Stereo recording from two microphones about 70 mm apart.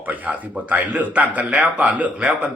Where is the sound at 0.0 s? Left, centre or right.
Right.